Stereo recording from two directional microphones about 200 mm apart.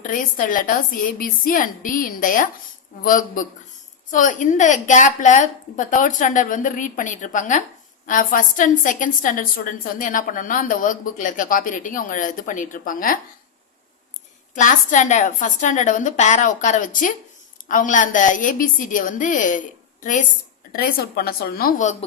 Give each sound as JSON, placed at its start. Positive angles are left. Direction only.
{"t": 0.0, "sound": "a woman's voice", "side_deg": 40}
{"t": 14.5, "sound": "a woman's voice", "side_deg": 40}